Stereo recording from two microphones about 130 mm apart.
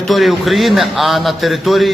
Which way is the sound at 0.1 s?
Centre (ahead or behind).